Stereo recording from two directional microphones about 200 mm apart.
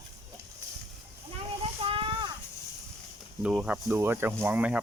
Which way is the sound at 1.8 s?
25° right (ahead or behind).